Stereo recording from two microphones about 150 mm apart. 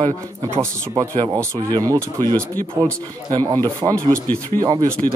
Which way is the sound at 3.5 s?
20° right (ahead or behind).